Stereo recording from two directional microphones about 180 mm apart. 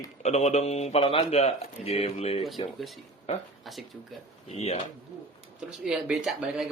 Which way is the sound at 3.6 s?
Centre (ahead or behind).